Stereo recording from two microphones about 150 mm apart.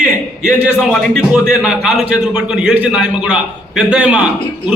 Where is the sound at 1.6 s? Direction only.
5° right (ahead or behind).